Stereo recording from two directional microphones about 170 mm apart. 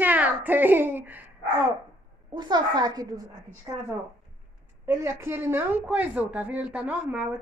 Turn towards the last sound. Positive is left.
turn(degrees=-10)  # may be behind; listen again after turning